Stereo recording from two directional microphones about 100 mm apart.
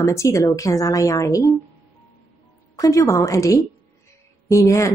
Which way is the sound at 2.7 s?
35° left (ahead or behind).